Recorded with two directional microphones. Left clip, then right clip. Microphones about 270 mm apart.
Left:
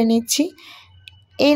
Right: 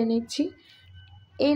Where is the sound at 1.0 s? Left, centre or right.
Left.